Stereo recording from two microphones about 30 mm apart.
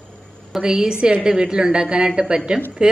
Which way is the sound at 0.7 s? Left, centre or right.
Right.